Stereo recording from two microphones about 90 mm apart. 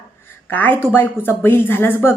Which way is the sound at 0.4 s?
20° left (ahead or behind).